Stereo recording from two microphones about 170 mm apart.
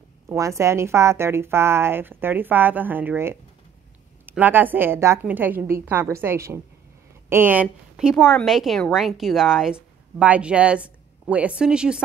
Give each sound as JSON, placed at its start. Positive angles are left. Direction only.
{"t": 0.3, "sound": "a woman's voice", "side_deg": -15}